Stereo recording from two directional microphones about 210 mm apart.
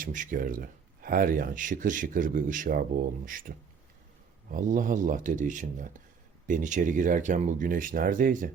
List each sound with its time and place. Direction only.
0.0 s speech: 40° right (ahead or behind)
4.4 s speech: 40° right (ahead or behind)